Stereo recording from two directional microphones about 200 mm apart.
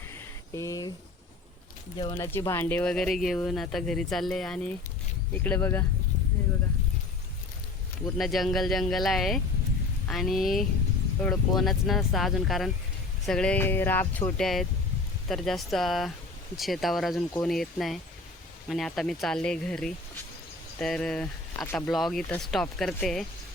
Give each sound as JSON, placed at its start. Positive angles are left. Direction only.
{"t": 0.1, "sound": "a sound", "side_deg": 15}
{"t": 2.0, "sound": "speech", "side_deg": 15}
{"t": 8.2, "sound": "speech", "side_deg": 0}